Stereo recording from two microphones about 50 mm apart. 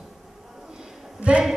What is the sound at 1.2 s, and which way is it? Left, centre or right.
Speech, right.